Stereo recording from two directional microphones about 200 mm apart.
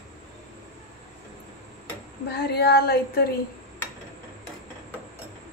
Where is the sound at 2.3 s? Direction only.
55° left (ahead or behind).